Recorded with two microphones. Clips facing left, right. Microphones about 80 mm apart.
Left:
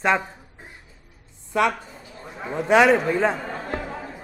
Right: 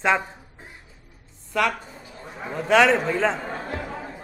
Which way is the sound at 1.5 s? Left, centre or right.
Centre.